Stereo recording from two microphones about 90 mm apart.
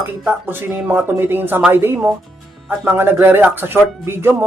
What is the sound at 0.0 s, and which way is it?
Speech, 25° right (ahead or behind).